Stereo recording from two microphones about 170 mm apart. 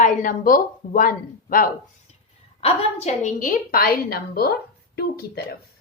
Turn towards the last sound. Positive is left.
turn(degrees=70)  # may be behind; listen again after turning